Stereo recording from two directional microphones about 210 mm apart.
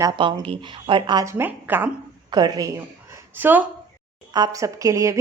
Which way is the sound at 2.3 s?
20° right (ahead or behind).